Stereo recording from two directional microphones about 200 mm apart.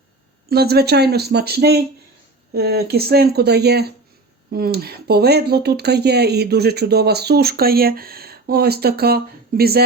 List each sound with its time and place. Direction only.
0.4 s speech: 50° right (ahead or behind)